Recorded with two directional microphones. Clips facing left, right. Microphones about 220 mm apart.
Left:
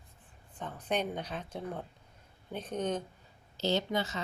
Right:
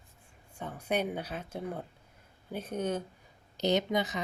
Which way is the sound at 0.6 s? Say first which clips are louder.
Right 2 dB; 10° right (ahead or behind).